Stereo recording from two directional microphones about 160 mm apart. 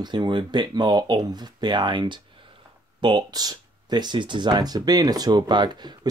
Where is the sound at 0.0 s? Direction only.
30° right (ahead or behind).